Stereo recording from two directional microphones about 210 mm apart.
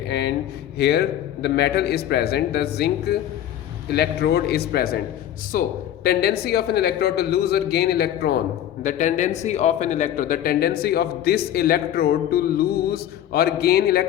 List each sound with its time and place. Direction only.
0.1 s a man's voice: 50° left (ahead or behind)
8.8 s a man's voice: 35° left (ahead or behind)